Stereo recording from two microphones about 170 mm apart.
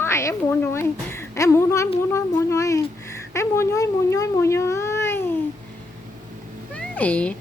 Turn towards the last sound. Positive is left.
turn(degrees=10)  # may be behind; listen again after turning